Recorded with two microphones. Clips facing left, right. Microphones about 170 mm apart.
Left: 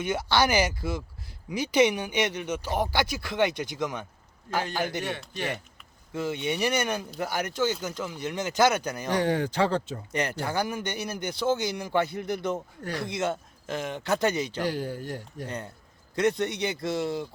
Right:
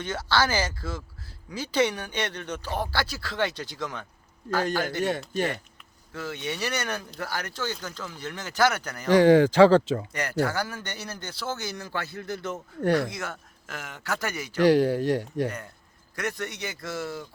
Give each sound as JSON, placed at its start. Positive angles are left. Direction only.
{"t": 0.0, "sound": "speech", "side_deg": 15}
{"t": 5.0, "sound": "speech", "side_deg": -45}
{"t": 6.1, "sound": "speech", "side_deg": 20}
{"t": 9.0, "sound": "speech", "side_deg": -90}
{"t": 10.1, "sound": "speech", "side_deg": 20}
{"t": 14.6, "sound": "speech", "side_deg": -90}
{"t": 15.4, "sound": "speech", "side_deg": 25}